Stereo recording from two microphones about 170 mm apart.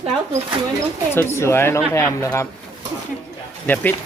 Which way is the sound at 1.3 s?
15° left (ahead or behind).